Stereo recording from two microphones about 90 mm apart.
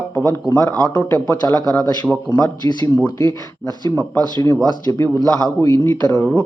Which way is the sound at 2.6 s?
40° left (ahead or behind).